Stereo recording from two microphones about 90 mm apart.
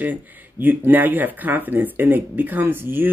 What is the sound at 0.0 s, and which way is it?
Speech, 20° right (ahead or behind).